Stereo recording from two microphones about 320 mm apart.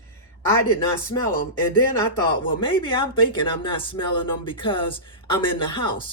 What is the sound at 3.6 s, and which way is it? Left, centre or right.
Speech, centre.